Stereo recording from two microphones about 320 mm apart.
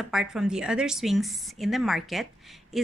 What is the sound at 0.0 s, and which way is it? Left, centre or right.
A woman's voice, centre.